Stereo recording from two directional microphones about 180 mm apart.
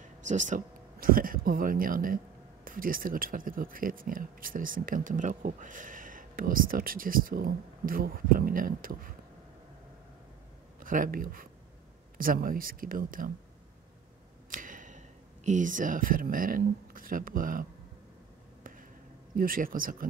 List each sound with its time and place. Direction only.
0.0 s speech: 45° right (ahead or behind)
10.8 s speech: 50° right (ahead or behind)
14.5 s speech: 50° right (ahead or behind)
18.6 s a sound: 50° right (ahead or behind)
19.3 s speech: 50° right (ahead or behind)